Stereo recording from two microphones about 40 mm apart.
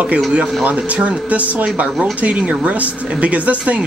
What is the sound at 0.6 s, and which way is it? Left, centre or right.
Speech, right.